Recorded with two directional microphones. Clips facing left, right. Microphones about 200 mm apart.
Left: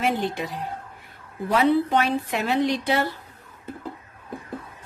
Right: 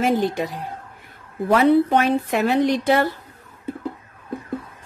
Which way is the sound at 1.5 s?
50° right (ahead or behind).